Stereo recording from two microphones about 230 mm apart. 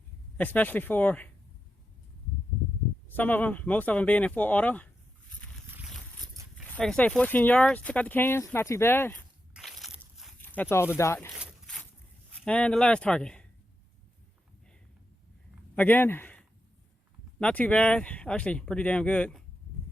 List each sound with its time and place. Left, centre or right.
0.3 s speech: centre
3.2 s speech: centre
6.7 s speech: centre
9.5 s walk: centre
11.3 s a sound: centre
12.5 s speech: centre
15.7 s a man's voice: centre